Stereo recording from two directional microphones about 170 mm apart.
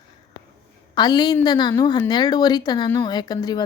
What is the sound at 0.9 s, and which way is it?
A woman's voice, 25° left (ahead or behind).